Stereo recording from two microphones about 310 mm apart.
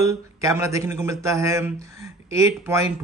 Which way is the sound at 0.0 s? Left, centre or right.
Centre.